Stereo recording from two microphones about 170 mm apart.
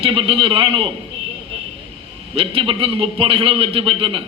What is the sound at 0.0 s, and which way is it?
Speech, 30° right (ahead or behind).